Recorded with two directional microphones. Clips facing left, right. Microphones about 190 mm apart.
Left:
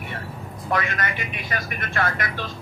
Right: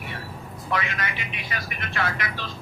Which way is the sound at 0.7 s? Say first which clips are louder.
Left 3 dB; 50° left (ahead or behind).